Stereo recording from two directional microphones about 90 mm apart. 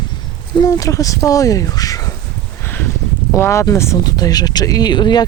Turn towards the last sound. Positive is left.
turn(degrees=55)  # may be behind; listen again after turning